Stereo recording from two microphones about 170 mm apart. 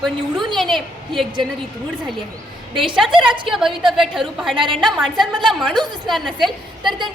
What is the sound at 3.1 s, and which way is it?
Speech, 30° right (ahead or behind).